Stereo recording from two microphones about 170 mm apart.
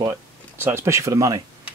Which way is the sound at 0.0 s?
15° right (ahead or behind).